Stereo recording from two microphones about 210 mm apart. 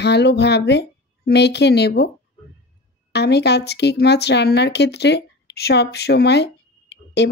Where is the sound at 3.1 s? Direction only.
55° left (ahead or behind).